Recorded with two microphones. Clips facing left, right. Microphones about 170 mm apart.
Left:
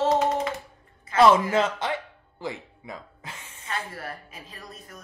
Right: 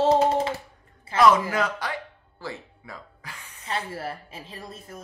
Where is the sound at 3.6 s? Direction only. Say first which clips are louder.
Right 3 dB; 30° right (ahead or behind).